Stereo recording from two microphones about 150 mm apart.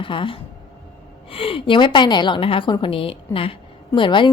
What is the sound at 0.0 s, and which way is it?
A woman's voice, 35° left (ahead or behind).